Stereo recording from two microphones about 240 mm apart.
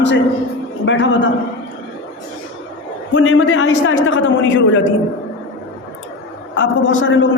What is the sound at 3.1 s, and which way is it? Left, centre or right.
A man's voice, left.